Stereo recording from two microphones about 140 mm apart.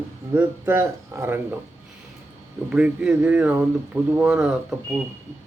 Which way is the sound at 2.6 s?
10° right (ahead or behind).